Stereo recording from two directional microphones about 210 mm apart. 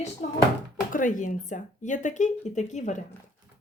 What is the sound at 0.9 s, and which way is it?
Speech, 40° left (ahead or behind).